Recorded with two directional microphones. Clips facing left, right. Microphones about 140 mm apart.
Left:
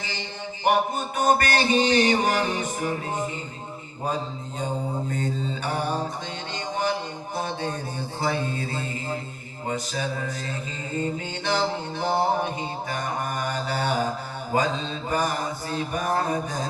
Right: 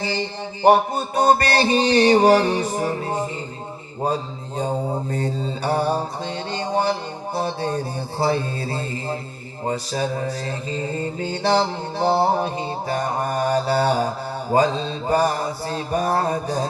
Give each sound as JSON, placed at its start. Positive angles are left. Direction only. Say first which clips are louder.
{"t": 0.6, "sound": "mantra", "louder": "right 7 dB", "side_deg": -35}
{"t": 4.5, "sound": "mantra", "louder": "right 6 dB", "side_deg": -35}